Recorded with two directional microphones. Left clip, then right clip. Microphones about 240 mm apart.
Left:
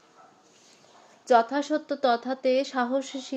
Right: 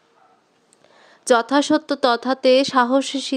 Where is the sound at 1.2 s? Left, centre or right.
Right.